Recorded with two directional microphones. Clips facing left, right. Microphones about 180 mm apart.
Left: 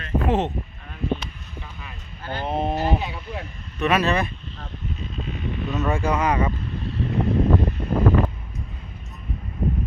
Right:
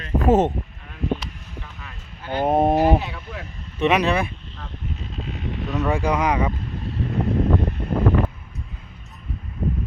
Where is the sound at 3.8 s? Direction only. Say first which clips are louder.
Right 2 dB; 15° right (ahead or behind).